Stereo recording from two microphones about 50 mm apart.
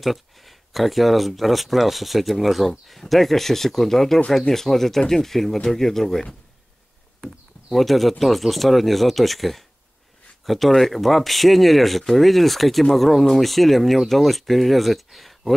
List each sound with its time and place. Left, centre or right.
0.0 s speech: centre
7.7 s speech: centre